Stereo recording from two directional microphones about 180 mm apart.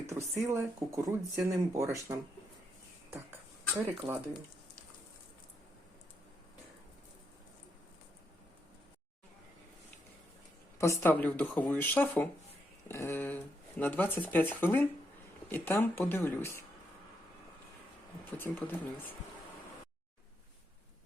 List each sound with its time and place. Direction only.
0.1 s speech: 15° right (ahead or behind)
4.0 s speech: 25° right (ahead or behind)
10.8 s speech: 15° left (ahead or behind)
18.3 s speech: 10° left (ahead or behind)